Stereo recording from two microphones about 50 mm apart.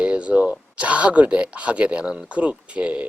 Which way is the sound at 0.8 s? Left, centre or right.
Right.